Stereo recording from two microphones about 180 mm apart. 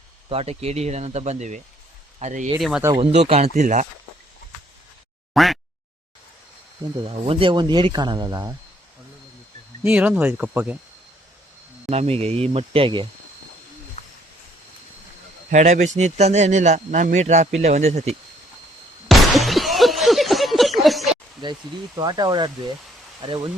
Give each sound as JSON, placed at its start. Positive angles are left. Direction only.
{"t": 0.3, "sound": "speech", "side_deg": -35}
{"t": 2.6, "sound": "speech", "side_deg": 0}
{"t": 3.0, "sound": "speech", "side_deg": -35}
{"t": 5.3, "sound": "a sound", "side_deg": 0}
{"t": 7.0, "sound": "speech", "side_deg": -30}
{"t": 9.8, "sound": "speech", "side_deg": -10}
{"t": 11.9, "sound": "speech", "side_deg": -35}
{"t": 14.0, "sound": "a sound", "side_deg": 40}
{"t": 15.4, "sound": "speech", "side_deg": -45}
{"t": 19.0, "sound": "a sound", "side_deg": 0}
{"t": 21.4, "sound": "speech", "side_deg": -25}